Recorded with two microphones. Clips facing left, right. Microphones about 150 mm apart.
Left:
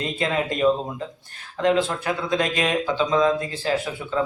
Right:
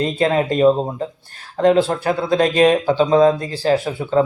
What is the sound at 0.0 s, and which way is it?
Speech, 35° right (ahead or behind).